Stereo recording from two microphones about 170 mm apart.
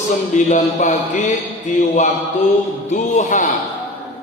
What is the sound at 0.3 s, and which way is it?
A man's voice, 45° left (ahead or behind).